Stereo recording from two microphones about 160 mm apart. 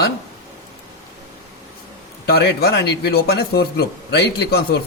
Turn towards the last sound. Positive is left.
turn(degrees=90)